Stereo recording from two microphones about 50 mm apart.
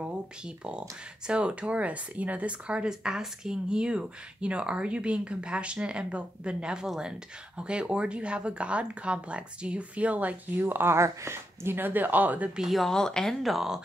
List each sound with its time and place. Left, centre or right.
0.7 s speech: right
2.9 s speech: centre; by 10.6 s right
10.6 s speech: right
12.6 s speech: centre
12.9 s speech: centre
13.4 s speech: centre